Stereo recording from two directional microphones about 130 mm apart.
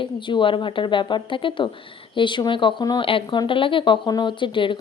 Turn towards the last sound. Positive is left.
turn(degrees=40)  # may be behind; listen again after turning